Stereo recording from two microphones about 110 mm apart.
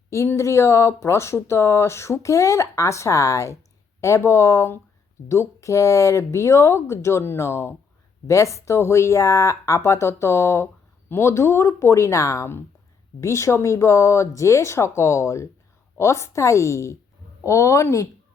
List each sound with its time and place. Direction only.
0.1 s speech: 25° left (ahead or behind)